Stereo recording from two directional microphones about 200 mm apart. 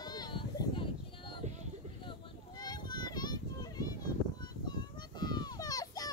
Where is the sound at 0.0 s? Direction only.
20° left (ahead or behind).